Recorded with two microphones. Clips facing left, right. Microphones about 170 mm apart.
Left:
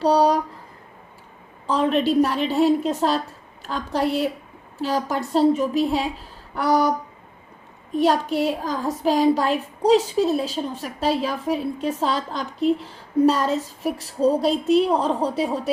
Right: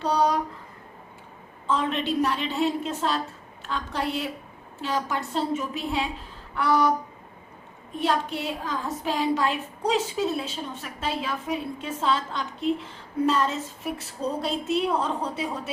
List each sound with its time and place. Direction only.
0.0 s a woman's voice: 35° left (ahead or behind)
1.6 s a woman's voice: 35° left (ahead or behind)
7.9 s a woman's voice: 40° left (ahead or behind)